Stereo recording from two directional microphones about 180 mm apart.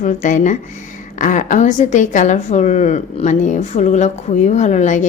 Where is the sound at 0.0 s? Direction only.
45° left (ahead or behind).